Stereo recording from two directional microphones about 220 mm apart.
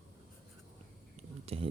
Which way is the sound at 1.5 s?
25° right (ahead or behind).